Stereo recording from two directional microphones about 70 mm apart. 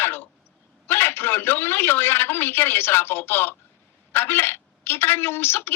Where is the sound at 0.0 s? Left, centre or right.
Left.